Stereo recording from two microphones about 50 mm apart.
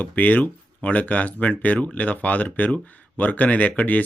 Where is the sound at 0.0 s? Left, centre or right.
Left.